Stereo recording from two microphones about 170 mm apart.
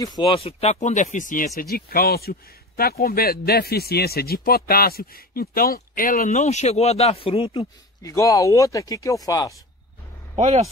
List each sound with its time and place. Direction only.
0.0 s speech: 25° left (ahead or behind)
8.0 s speech: 20° left (ahead or behind)
10.3 s speech: 40° right (ahead or behind)